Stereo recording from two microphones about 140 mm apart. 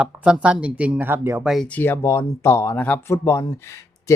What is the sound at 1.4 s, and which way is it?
Speech, centre (ahead or behind).